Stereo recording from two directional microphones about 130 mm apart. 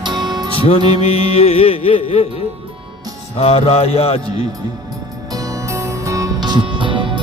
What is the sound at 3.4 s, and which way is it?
Music, 50° left (ahead or behind).